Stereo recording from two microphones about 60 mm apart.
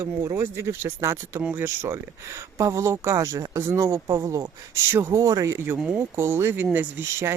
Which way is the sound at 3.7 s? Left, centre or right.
Right.